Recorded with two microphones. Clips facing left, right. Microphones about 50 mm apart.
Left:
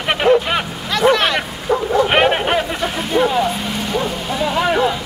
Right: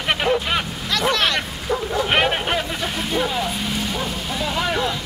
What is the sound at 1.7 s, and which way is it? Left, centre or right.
Bow-wow, centre.